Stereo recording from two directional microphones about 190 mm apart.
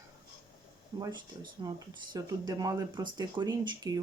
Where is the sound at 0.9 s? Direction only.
20° right (ahead or behind).